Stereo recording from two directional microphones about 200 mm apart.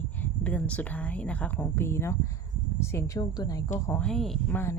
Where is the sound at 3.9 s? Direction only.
5° left (ahead or behind).